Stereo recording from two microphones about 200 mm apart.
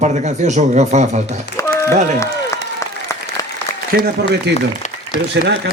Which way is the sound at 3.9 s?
50° right (ahead or behind).